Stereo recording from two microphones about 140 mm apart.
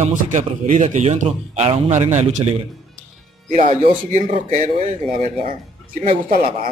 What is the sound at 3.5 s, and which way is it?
Speech, 55° right (ahead or behind).